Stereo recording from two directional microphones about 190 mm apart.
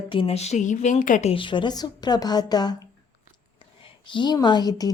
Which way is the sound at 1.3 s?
25° left (ahead or behind).